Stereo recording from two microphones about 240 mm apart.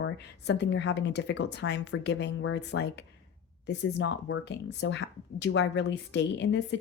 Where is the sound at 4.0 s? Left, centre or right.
Left.